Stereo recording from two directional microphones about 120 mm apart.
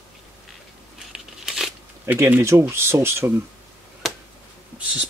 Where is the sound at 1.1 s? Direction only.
5° right (ahead or behind).